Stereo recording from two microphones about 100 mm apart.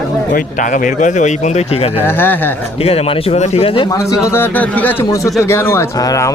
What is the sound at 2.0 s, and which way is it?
Speech, 20° left (ahead or behind).